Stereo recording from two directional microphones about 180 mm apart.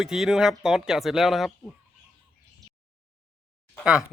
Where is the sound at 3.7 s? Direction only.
Centre (ahead or behind).